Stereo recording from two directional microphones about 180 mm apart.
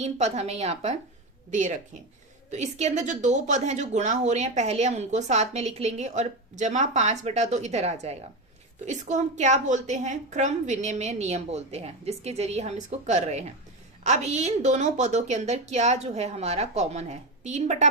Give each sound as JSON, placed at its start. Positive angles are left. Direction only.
{"t": 0.0, "sound": "a woman's voice", "side_deg": -35}